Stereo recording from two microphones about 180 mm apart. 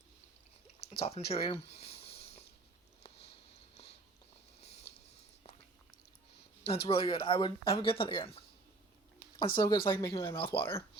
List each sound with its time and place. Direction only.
0.9 s speech: 35° left (ahead or behind)
1.7 s a sound: 35° left (ahead or behind)
4.6 s a sound: 35° left (ahead or behind)
6.8 s speech: 30° left (ahead or behind)
9.6 s speech: 25° left (ahead or behind)
10.6 s speech: 15° left (ahead or behind)